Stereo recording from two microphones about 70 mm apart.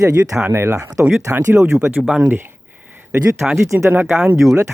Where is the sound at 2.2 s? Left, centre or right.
Right.